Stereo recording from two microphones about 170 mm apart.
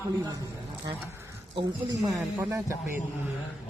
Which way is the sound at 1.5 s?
25° right (ahead or behind).